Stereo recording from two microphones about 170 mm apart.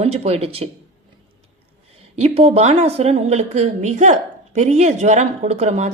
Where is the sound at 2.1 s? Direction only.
35° right (ahead or behind).